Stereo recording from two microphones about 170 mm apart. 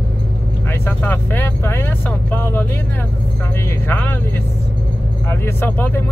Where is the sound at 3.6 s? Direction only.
10° left (ahead or behind).